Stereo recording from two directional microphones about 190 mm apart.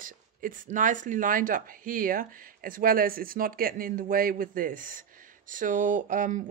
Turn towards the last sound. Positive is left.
turn(degrees=-45)  # may be behind; listen again after turning